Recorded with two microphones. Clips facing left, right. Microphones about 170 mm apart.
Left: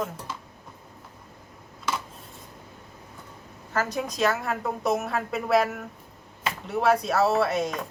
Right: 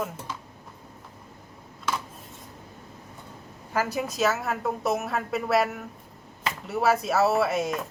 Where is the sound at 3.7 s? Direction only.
5° right (ahead or behind).